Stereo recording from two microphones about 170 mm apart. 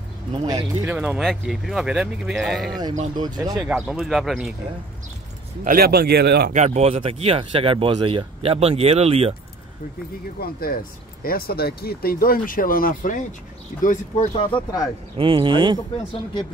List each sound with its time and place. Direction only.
0.3 s speech: 25° right (ahead or behind)
0.8 s speech: 5° right (ahead or behind)
3.2 s speech: 25° right (ahead or behind)
3.6 s speech: 5° right (ahead or behind)
5.6 s a man's voice: 60° right (ahead or behind)
6.5 s speech: 40° right (ahead or behind)
10.4 s speech: 60° left (ahead or behind)
13.8 s speech: 40° left (ahead or behind)
15.1 s speech: 30° right (ahead or behind)